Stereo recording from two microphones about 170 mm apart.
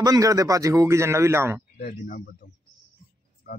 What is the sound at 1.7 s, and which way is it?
Speech, 65° left (ahead or behind).